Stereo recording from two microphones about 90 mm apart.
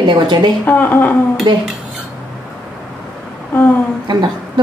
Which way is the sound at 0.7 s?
20° left (ahead or behind).